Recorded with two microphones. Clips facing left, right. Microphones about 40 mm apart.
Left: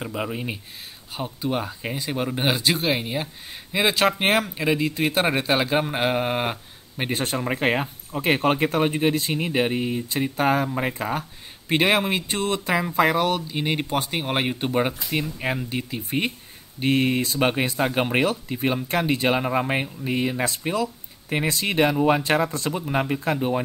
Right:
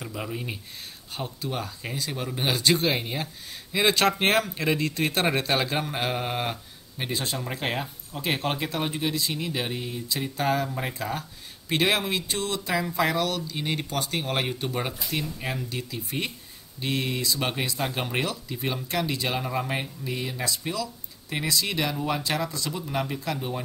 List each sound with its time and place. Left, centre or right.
0.0 s speech: left
1.1 s a man's voice: centre
1.5 s speech: left
2.6 s a man's voice: centre; by 7.1 s left
7.1 s speech: left